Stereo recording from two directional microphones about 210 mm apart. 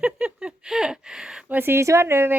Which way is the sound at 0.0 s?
5° right (ahead or behind).